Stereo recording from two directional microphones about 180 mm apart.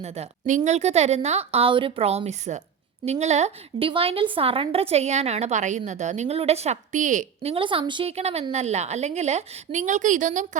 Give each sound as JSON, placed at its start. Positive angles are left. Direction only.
{"t": 0.0, "sound": "a woman's voice", "side_deg": -40}
{"t": 7.5, "sound": "a woman's voice", "side_deg": -30}